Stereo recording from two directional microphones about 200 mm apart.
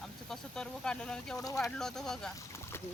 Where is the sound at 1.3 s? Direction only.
15° left (ahead or behind).